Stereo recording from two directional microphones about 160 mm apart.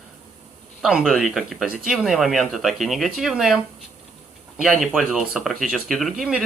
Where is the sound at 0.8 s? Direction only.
5° right (ahead or behind).